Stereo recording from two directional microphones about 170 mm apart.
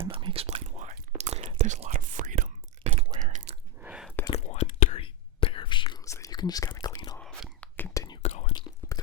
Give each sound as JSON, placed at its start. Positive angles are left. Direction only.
{"t": 0.0, "sound": "whispering", "side_deg": -30}
{"t": 3.2, "sound": "chewing", "side_deg": -40}
{"t": 3.8, "sound": "a sound", "side_deg": -5}
{"t": 4.3, "sound": "whispering", "side_deg": 40}
{"t": 7.2, "sound": "whispering", "side_deg": 5}
{"t": 7.9, "sound": "whispering", "side_deg": 25}
{"t": 8.2, "sound": "whispering", "side_deg": 40}
{"t": 8.8, "sound": "biting", "side_deg": 20}